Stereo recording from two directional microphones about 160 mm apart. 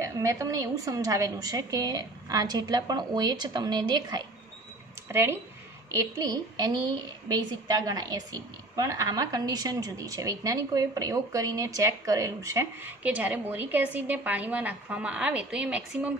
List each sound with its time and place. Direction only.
0.0 s a woman's voice: 20° right (ahead or behind)
5.0 s a woman's voice: 15° right (ahead or behind)